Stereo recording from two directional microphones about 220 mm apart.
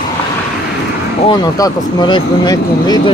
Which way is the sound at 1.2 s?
20° left (ahead or behind).